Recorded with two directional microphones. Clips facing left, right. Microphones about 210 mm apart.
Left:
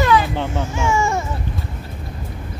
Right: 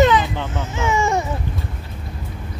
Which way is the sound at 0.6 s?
20° right (ahead or behind).